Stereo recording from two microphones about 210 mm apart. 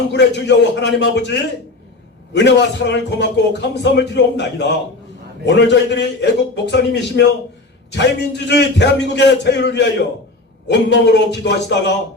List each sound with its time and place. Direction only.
0.1 s a man's voice: 55° left (ahead or behind)